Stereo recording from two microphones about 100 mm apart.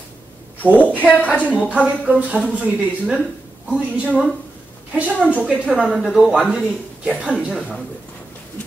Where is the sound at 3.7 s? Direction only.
15° right (ahead or behind).